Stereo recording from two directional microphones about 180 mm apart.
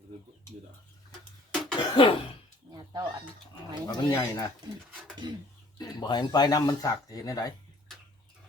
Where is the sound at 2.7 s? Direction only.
25° right (ahead or behind).